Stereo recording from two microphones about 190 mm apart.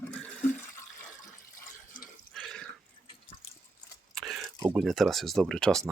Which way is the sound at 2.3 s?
5° left (ahead or behind).